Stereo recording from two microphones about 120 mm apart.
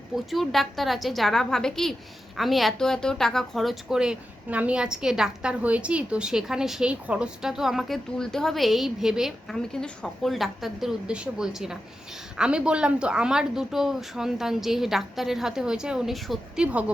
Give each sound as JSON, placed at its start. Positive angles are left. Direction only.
{"t": 0.3, "sound": "a woman's voice", "side_deg": 0}